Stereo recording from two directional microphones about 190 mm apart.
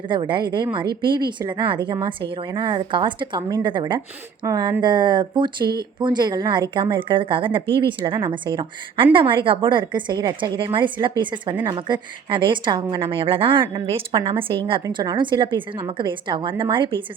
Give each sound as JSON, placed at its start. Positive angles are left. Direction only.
{"t": 0.1, "sound": "a woman's voice", "side_deg": -25}